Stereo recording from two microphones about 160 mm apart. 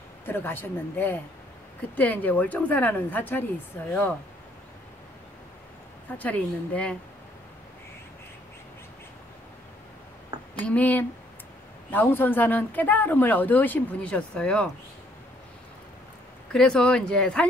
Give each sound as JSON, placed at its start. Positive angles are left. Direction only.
{"t": 0.3, "sound": "speech", "side_deg": 15}
{"t": 6.1, "sound": "speech", "side_deg": 10}
{"t": 10.6, "sound": "speech", "side_deg": 10}
{"t": 16.5, "sound": "speech", "side_deg": 5}